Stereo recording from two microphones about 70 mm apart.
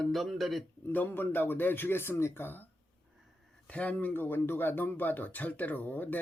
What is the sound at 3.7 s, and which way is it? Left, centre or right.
Speech, left.